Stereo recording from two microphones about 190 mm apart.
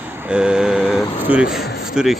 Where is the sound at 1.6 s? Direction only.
55° left (ahead or behind).